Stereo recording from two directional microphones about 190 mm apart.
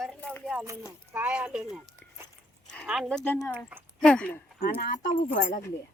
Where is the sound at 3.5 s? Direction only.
10° right (ahead or behind).